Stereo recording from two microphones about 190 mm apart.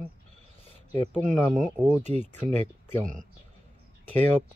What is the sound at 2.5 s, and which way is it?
Speech, 10° left (ahead or behind).